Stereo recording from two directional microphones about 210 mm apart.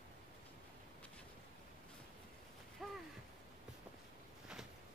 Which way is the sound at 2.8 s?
Centre (ahead or behind).